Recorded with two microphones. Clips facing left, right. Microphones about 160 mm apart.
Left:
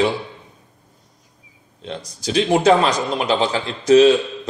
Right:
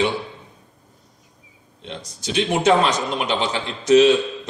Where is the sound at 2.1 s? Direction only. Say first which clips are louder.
Left 4 dB; 35° left (ahead or behind).